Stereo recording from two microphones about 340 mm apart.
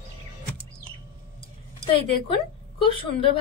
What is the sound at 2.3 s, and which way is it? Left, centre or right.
A woman's voice, centre.